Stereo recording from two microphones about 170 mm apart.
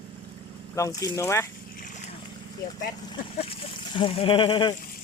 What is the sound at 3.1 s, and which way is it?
Speech, 35° left (ahead or behind).